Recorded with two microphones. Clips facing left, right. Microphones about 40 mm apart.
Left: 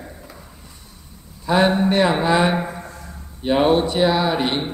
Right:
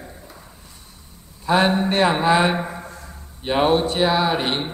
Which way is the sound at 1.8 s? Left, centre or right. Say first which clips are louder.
Left 1 dB; centre.